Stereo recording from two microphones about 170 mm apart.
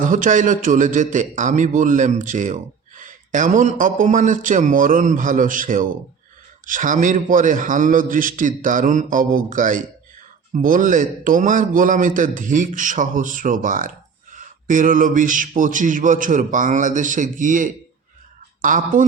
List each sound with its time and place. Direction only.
0.0 s a man's voice: 50° right (ahead or behind)